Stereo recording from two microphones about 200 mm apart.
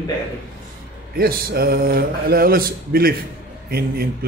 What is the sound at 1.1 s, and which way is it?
Speech, 50° right (ahead or behind).